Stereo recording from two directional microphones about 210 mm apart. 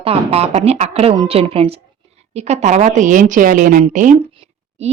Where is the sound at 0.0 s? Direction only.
30° right (ahead or behind).